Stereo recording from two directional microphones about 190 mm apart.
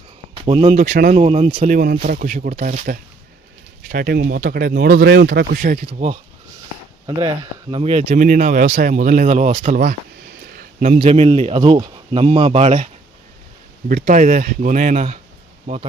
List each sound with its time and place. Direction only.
0.4 s speech: 30° right (ahead or behind)
1.6 s speech: 45° right (ahead or behind)
5.8 s speech: 30° right (ahead or behind)
7.2 s speech: 20° right (ahead or behind)
7.8 s speech: 35° right (ahead or behind)
9.7 s a sound: 50° right (ahead or behind)
10.9 s speech: 30° right (ahead or behind)
13.8 s speech: 45° right (ahead or behind)